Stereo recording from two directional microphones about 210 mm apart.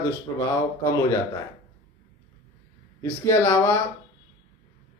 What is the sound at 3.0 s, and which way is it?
Speech, 10° left (ahead or behind).